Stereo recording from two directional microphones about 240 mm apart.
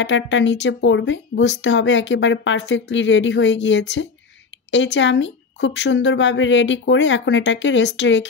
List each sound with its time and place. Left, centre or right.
0.0 s speech: left